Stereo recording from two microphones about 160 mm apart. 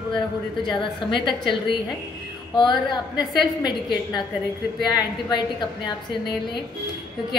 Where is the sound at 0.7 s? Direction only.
30° left (ahead or behind).